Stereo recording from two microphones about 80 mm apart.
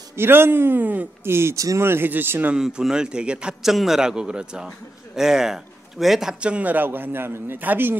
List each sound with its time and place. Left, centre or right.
0.1 s a man's voice: right
1.9 s a man's voice: right
2.5 s a man's voice: centre; by 8.0 s right